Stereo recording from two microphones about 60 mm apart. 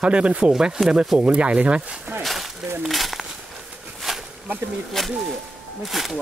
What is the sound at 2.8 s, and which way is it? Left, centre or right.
Speech, centre.